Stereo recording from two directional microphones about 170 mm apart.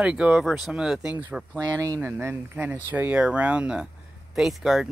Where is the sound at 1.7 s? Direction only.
20° right (ahead or behind).